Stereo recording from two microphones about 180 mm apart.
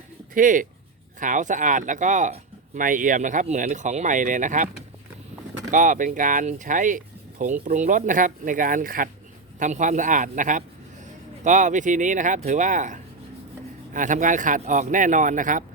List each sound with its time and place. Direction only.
0.3 s speech: 45° right (ahead or behind)
5.7 s speech: 45° right (ahead or behind)